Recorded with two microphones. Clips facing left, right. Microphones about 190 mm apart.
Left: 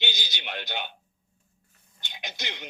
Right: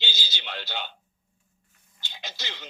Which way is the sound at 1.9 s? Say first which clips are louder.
Left 1 dB; 20° left (ahead or behind).